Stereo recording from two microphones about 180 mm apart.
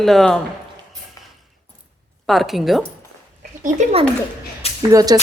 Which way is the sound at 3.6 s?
40° right (ahead or behind).